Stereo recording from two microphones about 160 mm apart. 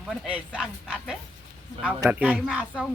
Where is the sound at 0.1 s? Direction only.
5° right (ahead or behind).